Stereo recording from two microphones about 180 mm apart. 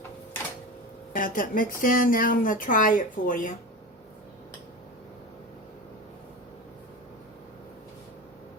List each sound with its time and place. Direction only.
1.1 s speech: 50° left (ahead or behind)